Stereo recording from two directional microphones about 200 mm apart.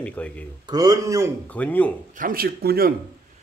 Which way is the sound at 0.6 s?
20° right (ahead or behind).